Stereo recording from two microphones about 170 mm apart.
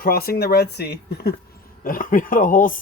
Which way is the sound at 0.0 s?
60° left (ahead or behind).